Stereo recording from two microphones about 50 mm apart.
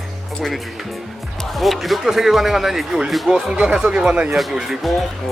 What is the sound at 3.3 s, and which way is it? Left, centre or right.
Speech, centre.